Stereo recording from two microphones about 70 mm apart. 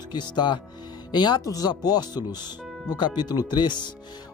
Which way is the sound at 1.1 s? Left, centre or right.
Left.